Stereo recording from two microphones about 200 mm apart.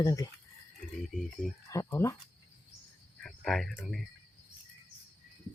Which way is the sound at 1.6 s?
15° left (ahead or behind).